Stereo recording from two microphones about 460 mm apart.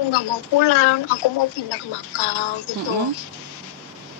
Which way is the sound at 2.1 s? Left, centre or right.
Left.